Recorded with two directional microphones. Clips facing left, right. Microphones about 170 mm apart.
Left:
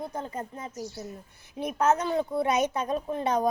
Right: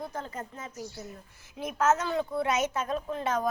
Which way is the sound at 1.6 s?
40° left (ahead or behind).